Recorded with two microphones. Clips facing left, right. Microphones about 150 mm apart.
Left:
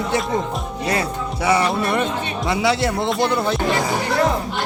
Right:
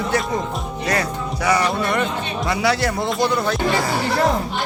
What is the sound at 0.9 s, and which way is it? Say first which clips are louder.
Speech: even; 25° left (ahead or behind).